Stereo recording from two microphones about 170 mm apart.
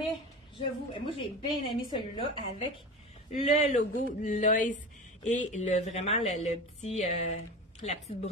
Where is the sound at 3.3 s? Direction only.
40° left (ahead or behind).